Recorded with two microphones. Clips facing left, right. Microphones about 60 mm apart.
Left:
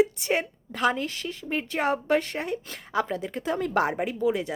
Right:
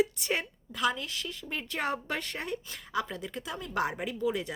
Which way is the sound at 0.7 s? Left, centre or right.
Left.